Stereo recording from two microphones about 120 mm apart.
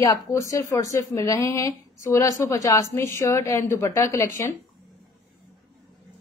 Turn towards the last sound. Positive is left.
turn(degrees=25)  # may be behind; listen again after turning